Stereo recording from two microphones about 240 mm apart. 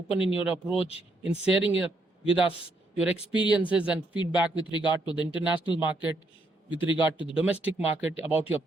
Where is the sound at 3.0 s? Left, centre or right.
Centre.